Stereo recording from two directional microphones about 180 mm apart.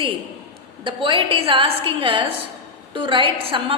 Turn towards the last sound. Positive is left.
turn(degrees=-30)  # may be behind; listen again after turning